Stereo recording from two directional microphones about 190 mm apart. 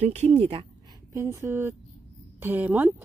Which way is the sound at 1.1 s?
15° right (ahead or behind).